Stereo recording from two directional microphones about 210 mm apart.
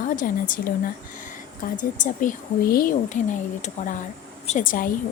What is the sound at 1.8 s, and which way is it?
A woman's voice, 40° left (ahead or behind).